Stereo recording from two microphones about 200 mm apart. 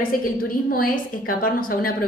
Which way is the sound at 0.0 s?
45° left (ahead or behind).